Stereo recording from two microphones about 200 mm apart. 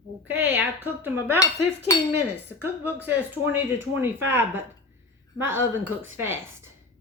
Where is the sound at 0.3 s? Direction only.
10° right (ahead or behind).